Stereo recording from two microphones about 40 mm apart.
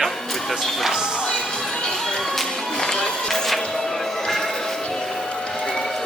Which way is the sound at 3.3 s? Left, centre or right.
Centre.